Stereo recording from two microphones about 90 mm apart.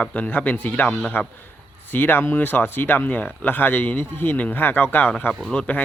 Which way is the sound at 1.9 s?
20° left (ahead or behind).